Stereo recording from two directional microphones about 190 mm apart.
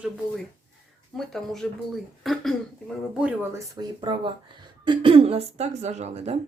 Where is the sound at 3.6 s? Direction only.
25° right (ahead or behind).